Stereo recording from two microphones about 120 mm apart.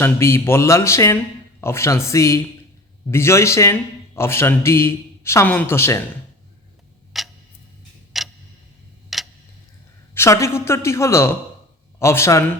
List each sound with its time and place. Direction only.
0.0 s a man's voice: 20° left (ahead or behind)
7.1 s tick-tock: centre (ahead or behind)
10.2 s a man's voice: 25° left (ahead or behind)